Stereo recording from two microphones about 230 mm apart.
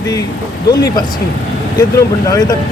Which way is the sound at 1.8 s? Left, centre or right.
Centre.